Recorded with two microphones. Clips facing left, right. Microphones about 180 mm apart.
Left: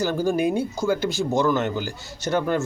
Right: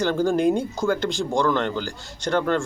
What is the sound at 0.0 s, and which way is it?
A man's voice, 5° left (ahead or behind).